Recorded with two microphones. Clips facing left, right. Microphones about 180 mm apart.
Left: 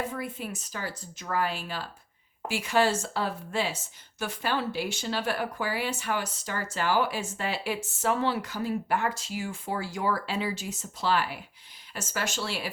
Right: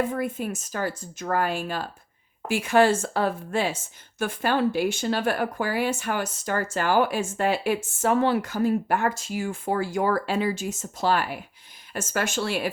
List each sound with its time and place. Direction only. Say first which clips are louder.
0.0 s speech: right 7 dB; 50° right (ahead or behind)